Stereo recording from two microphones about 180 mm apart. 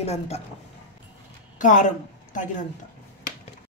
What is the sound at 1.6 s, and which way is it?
Speech, 45° left (ahead or behind).